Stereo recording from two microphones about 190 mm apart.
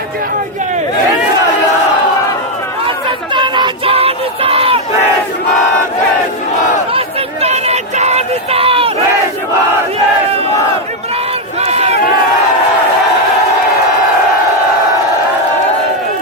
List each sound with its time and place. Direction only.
3.3 s a sound: 25° right (ahead or behind)
7.4 s run: 35° right (ahead or behind)
11.6 s crowd: 35° right (ahead or behind)